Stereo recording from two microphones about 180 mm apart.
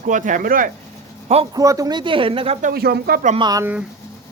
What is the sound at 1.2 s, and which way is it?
Speech, 35° right (ahead or behind).